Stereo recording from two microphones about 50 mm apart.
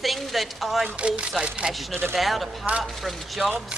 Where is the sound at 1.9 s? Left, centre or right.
Right.